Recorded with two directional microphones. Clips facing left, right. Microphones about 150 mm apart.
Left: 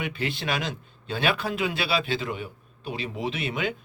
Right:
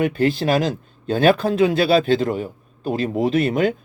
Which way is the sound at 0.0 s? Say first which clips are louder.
Right 12 dB; 45° right (ahead or behind).